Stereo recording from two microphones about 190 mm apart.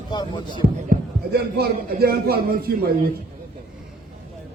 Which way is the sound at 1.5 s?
55° right (ahead or behind).